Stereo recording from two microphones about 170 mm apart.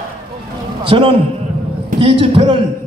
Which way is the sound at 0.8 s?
30° right (ahead or behind).